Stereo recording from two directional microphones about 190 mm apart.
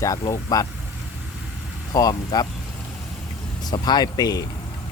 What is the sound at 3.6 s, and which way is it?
Speech, 20° left (ahead or behind).